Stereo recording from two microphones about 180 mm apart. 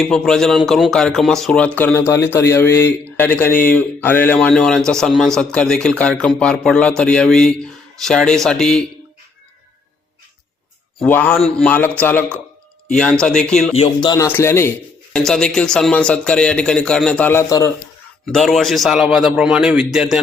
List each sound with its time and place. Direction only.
0.0 s speech: 5° left (ahead or behind)
11.0 s speech: 10° left (ahead or behind)
13.7 s speech: 30° left (ahead or behind)
14.3 s speech: 15° left (ahead or behind)
15.1 s speech: 5° left (ahead or behind)
18.3 s speech: centre (ahead or behind)